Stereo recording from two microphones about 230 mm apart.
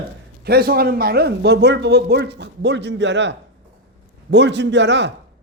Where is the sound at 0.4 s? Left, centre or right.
Right.